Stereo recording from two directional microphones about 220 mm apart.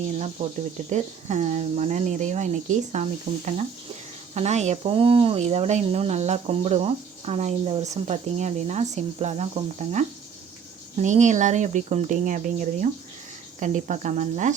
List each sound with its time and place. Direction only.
0.9 s speech: 30° right (ahead or behind)